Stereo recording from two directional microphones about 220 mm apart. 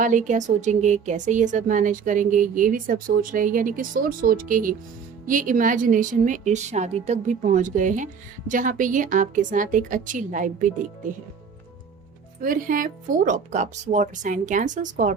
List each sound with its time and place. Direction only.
0.0 s speech: 35° right (ahead or behind)
12.4 s speech: 40° right (ahead or behind)